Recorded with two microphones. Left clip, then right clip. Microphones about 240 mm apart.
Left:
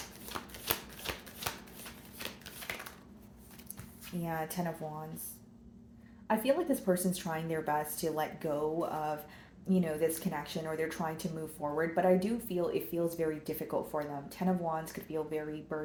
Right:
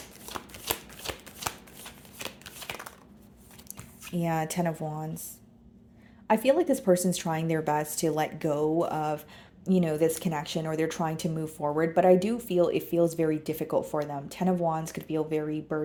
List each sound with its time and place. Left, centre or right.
0.3 s shuffling cards: right
4.2 s speech: right
6.2 s speech: right